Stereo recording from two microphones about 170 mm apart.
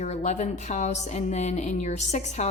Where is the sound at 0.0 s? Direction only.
45° left (ahead or behind).